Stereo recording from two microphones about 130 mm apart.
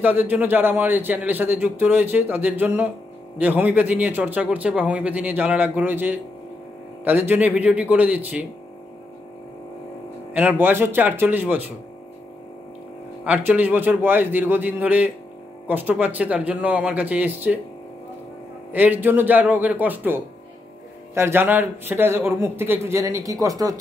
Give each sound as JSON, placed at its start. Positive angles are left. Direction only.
{"t": 0.0, "sound": "a man's voice", "side_deg": -15}
{"t": 10.3, "sound": "a man's voice", "side_deg": -15}
{"t": 13.2, "sound": "a man's voice", "side_deg": -10}
{"t": 18.7, "sound": "a man's voice", "side_deg": -15}